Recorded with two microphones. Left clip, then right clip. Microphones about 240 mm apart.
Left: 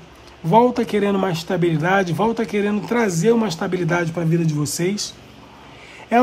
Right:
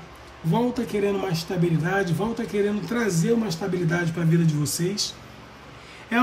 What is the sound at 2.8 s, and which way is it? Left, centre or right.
Speech, centre.